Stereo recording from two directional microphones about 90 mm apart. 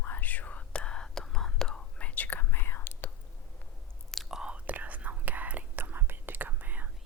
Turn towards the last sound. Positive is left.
turn(degrees=-20)  # may be behind; listen again after turning